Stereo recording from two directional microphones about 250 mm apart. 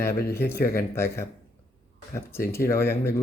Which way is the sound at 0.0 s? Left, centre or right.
Centre.